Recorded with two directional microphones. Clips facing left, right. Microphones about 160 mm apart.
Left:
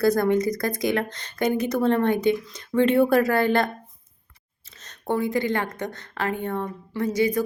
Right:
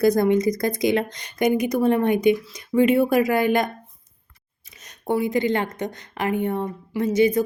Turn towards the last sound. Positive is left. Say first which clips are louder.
# right 4 dB
turn(degrees=-20)  # may be behind; listen again after turning